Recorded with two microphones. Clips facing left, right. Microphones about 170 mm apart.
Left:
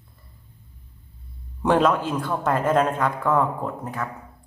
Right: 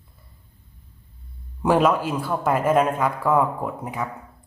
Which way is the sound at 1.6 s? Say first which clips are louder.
Right 1 dB; 5° right (ahead or behind).